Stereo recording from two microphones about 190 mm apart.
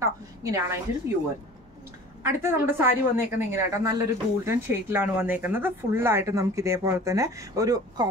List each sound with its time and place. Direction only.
0.0 s a woman's voice: 15° right (ahead or behind)
2.2 s a woman's voice: 10° right (ahead or behind)